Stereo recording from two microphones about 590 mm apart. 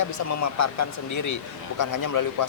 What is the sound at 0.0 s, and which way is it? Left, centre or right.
A man's voice, left.